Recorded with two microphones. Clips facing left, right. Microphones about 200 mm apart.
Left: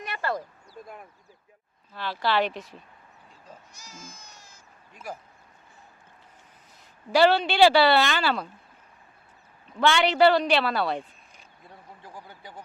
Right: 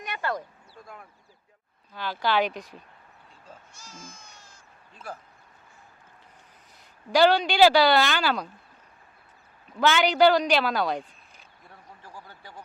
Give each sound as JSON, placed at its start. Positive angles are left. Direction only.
{"t": 0.0, "sound": "a sound", "side_deg": 0}
{"t": 0.8, "sound": "speech", "side_deg": 20}
{"t": 1.9, "sound": "a woman's voice", "side_deg": 0}
{"t": 7.1, "sound": "a woman's voice", "side_deg": 0}
{"t": 9.7, "sound": "speech", "side_deg": 0}
{"t": 11.7, "sound": "a sound", "side_deg": 15}